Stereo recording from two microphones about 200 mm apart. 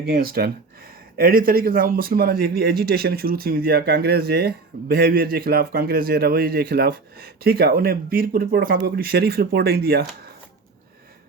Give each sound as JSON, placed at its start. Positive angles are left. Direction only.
{"t": 0.0, "sound": "speech", "side_deg": -50}